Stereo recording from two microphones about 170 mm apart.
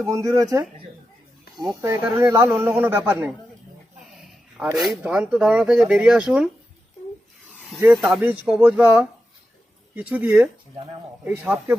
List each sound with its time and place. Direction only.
0.0 s speech: 20° right (ahead or behind)
1.8 s speech: 15° right (ahead or behind)
4.6 s speech: 5° right (ahead or behind)
8.1 s speech: 5° right (ahead or behind)